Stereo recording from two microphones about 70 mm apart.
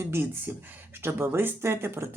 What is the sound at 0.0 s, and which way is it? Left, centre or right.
Speech, right.